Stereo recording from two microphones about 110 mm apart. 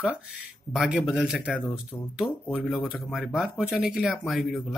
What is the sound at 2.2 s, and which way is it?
Speech, 20° left (ahead or behind).